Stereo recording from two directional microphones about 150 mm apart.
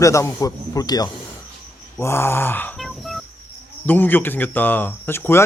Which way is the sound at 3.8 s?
10° left (ahead or behind).